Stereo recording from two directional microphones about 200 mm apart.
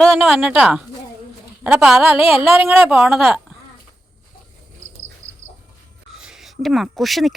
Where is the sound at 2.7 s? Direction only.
10° right (ahead or behind).